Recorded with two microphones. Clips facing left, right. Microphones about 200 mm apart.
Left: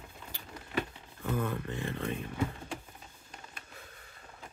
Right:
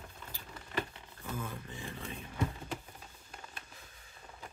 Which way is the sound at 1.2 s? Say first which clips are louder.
Left 8 dB; 65° left (ahead or behind).